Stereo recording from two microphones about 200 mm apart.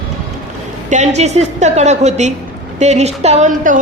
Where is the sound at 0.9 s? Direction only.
35° right (ahead or behind).